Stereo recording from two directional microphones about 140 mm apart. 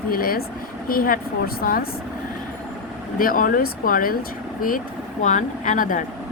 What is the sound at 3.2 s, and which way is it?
Speech, 85° left.